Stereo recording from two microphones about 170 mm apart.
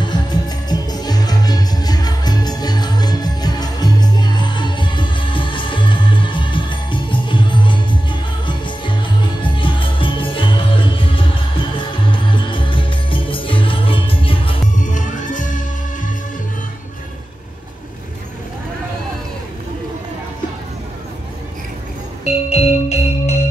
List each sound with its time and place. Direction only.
0.0 s music: 25° left (ahead or behind)
14.8 s music: 50° left (ahead or behind)
22.2 s music: 40° left (ahead or behind)